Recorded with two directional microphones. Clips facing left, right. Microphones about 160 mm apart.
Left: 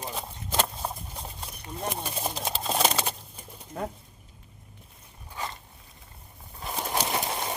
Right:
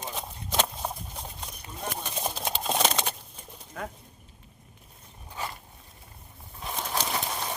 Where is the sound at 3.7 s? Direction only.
30° left (ahead or behind).